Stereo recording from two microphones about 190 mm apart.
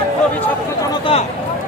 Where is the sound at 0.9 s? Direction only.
30° left (ahead or behind).